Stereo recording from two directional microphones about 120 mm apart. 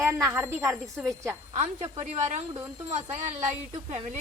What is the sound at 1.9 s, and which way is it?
Speech, 65° right (ahead or behind).